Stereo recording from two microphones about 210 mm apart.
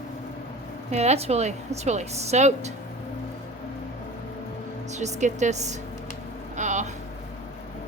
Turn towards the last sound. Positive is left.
turn(degrees=-35)  # may be behind; listen again after turning